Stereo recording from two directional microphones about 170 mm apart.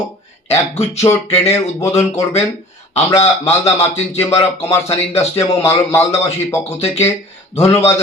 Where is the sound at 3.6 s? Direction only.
40° left (ahead or behind).